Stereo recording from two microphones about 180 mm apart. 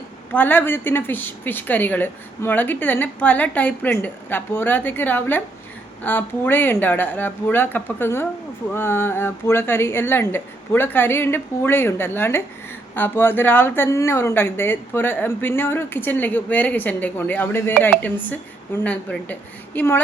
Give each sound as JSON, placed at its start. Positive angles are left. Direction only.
{"t": 0.3, "sound": "a woman's voice", "side_deg": 10}